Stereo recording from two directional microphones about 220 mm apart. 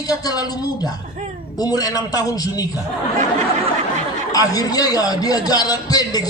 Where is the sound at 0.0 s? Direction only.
15° left (ahead or behind).